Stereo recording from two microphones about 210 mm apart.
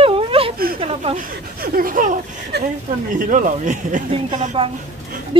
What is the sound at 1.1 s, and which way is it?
Speech, 45° right (ahead or behind).